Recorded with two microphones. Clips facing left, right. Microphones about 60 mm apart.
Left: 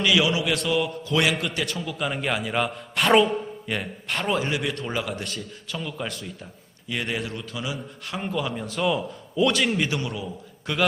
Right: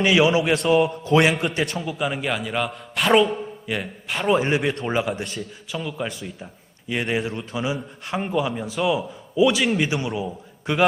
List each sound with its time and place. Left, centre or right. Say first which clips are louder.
0.0 s a man's voice: right 4 dB; right
2.0 s a man's voice: left 1 dB; centre
4.4 s a man's voice: right 5 dB; right